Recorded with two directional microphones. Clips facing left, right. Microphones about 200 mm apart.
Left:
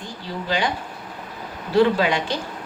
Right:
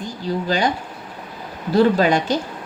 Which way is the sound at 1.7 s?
45° right (ahead or behind).